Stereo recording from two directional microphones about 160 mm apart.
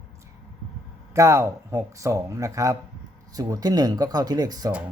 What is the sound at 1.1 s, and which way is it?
Speech, 20° right (ahead or behind).